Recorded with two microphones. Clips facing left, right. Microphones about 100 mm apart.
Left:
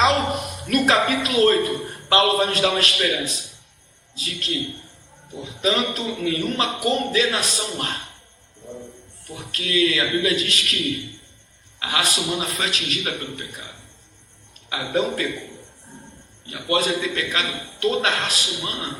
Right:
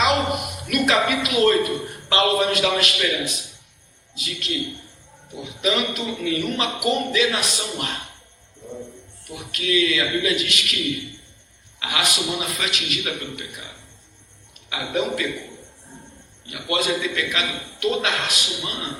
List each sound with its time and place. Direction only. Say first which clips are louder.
0.0 s a sound: left 1 dB; 35° left (ahead or behind)
2.4 s a man's voice: even; 35° left (ahead or behind)
9.2 s a man's voice: right 3 dB; 35° left (ahead or behind)
14.7 s a man's voice: left 1 dB; 35° left (ahead or behind)
16.5 s a man's voice: left 2 dB; 35° left (ahead or behind)